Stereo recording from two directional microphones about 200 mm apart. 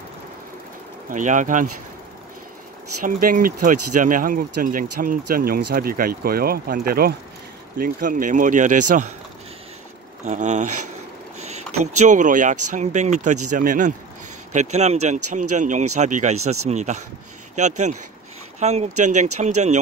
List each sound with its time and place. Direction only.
1.1 s speech: 40° right (ahead or behind)
3.1 s speech: 40° right (ahead or behind)
10.2 s speech: 35° right (ahead or behind)
11.3 s a sound: 35° right (ahead or behind)
12.0 s speech: 40° right (ahead or behind)